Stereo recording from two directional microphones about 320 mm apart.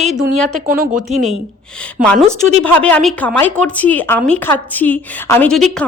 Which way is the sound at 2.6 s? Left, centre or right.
Centre.